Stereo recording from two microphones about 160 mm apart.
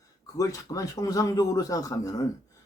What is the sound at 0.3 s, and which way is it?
Speech, 20° left (ahead or behind).